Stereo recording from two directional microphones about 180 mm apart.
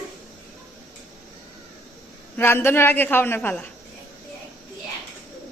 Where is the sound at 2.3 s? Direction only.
10° left (ahead or behind).